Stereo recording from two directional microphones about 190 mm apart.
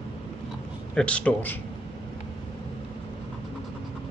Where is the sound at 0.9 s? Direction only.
5° left (ahead or behind).